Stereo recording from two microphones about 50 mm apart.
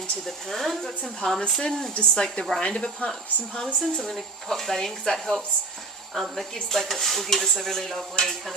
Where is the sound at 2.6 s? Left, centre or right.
Centre.